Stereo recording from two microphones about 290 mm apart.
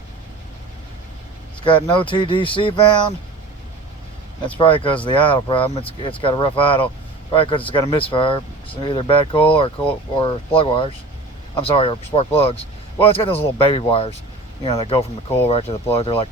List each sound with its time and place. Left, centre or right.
1.6 s speech: centre
4.4 s speech: centre